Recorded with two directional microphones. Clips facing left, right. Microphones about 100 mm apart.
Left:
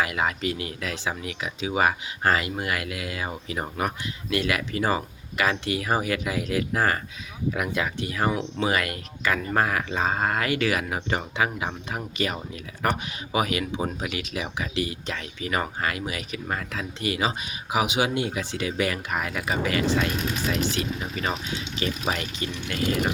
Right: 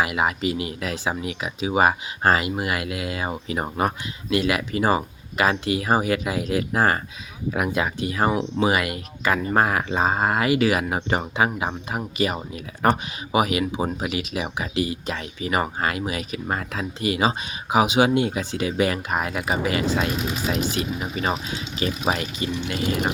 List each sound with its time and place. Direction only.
0.0 s speech: 15° right (ahead or behind)
12.8 s speech: 30° right (ahead or behind)
13.3 s speech: 20° right (ahead or behind)
13.7 s speech: 30° right (ahead or behind); by 21.1 s 15° right (ahead or behind)
21.8 s speech: 25° right (ahead or behind)